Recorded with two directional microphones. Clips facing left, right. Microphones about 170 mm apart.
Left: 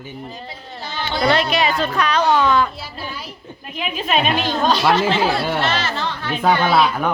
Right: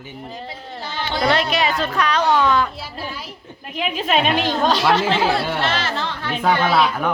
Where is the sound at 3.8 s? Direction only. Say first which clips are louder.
Right 1 dB; 90° right.